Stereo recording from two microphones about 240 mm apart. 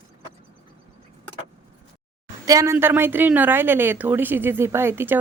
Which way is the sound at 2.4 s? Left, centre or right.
Centre.